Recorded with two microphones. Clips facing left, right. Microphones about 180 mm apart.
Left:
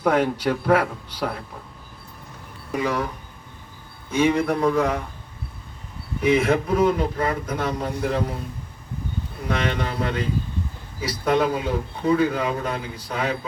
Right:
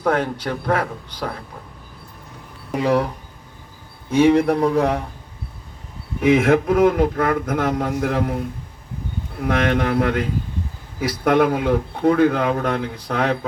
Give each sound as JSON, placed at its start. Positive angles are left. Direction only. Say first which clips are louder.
{"t": 0.0, "sound": "speech", "louder": "left 1 dB", "side_deg": 10}
{"t": 2.7, "sound": "speech", "louder": "right 5 dB", "side_deg": -35}
{"t": 4.1, "sound": "speech", "louder": "right 5 dB", "side_deg": -35}
{"t": 6.2, "sound": "a man's voice", "louder": "right 4 dB", "side_deg": -50}
{"t": 9.4, "sound": "a man's voice", "louder": "right 6 dB", "side_deg": -55}